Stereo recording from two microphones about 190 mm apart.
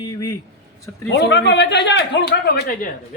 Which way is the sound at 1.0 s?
65° left (ahead or behind).